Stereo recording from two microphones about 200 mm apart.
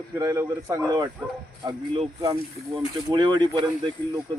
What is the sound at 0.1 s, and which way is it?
Speech, 15° right (ahead or behind).